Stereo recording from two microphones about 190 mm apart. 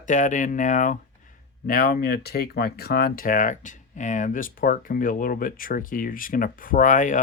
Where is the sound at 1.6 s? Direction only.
50° left (ahead or behind).